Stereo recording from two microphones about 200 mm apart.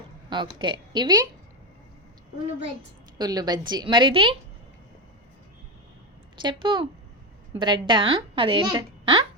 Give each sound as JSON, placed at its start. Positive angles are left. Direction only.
{"t": 0.3, "sound": "a woman's voice", "side_deg": -25}
{"t": 3.2, "sound": "a woman's voice", "side_deg": -20}
{"t": 6.4, "sound": "a woman's voice", "side_deg": -25}